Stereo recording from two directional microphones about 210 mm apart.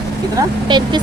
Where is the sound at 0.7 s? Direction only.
20° right (ahead or behind).